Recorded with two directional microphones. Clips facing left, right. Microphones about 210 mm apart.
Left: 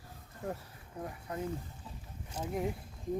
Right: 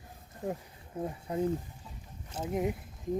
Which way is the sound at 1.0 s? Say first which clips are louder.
Right 7 dB; 25° right (ahead or behind).